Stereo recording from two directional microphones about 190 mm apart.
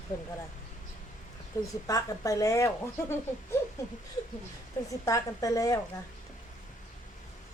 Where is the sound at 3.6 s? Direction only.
15° left (ahead or behind).